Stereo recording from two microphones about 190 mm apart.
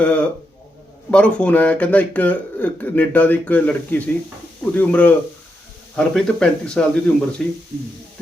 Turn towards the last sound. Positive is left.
turn(degrees=0)  # may be behind; listen again after turning